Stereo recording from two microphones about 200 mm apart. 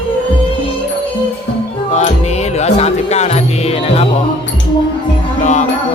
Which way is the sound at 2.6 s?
35° left (ahead or behind).